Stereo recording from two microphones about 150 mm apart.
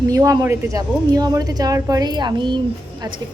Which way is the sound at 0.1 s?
20° right (ahead or behind).